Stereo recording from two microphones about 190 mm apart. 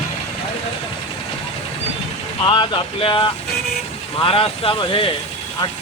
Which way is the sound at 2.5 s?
25° left (ahead or behind).